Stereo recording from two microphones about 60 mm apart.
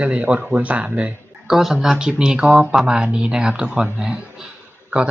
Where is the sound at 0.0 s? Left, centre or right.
Right.